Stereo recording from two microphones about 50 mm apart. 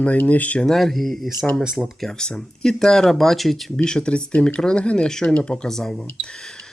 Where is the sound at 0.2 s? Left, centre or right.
Left.